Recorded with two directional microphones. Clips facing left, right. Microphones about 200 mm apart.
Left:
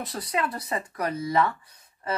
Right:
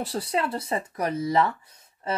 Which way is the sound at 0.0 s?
30° right (ahead or behind).